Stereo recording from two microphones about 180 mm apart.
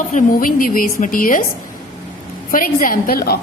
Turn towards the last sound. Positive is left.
turn(degrees=55)  # may be behind; listen again after turning